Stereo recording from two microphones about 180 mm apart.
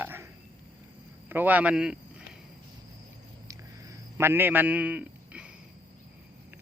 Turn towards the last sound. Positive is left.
turn(degrees=-5)  # may be behind; listen again after turning